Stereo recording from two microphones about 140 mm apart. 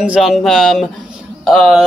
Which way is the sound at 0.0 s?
5° right (ahead or behind).